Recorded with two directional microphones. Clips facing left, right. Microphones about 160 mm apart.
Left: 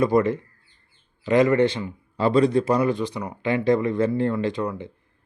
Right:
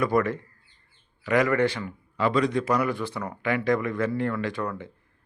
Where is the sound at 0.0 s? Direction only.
20° left (ahead or behind).